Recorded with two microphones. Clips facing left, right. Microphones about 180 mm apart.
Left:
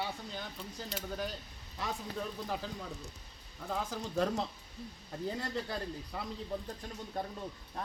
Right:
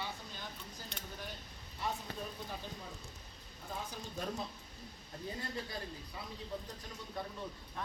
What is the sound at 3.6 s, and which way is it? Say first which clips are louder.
Speech: left 7 dB; 75° left (ahead or behind).